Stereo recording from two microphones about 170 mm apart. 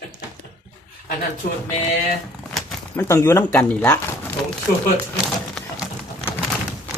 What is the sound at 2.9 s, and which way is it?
Speech, 15° left (ahead or behind).